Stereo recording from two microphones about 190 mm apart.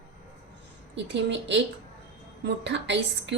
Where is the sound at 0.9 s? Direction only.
70° right (ahead or behind).